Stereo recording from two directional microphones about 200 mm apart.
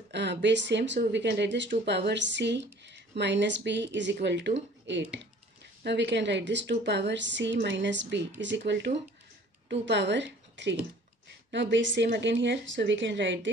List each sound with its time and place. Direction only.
0.1 s a woman's voice: 60° right (ahead or behind)